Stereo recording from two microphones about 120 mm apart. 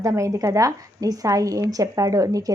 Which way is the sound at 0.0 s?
25° right (ahead or behind).